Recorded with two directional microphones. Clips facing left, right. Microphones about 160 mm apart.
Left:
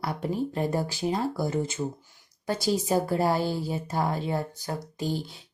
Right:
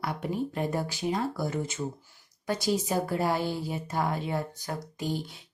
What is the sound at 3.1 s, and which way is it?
Speech, 35° left (ahead or behind).